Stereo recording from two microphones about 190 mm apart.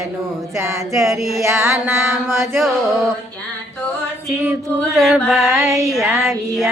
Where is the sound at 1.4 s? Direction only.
15° right (ahead or behind).